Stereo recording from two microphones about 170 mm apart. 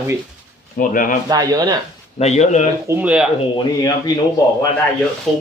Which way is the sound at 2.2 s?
40° left (ahead or behind).